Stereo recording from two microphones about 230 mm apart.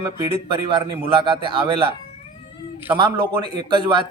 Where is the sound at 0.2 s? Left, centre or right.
Right.